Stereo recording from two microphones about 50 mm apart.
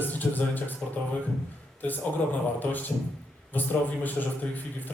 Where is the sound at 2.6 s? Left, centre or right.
Left.